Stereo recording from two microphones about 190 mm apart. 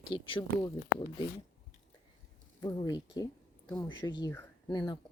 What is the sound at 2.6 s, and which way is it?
A woman's voice, 25° left (ahead or behind).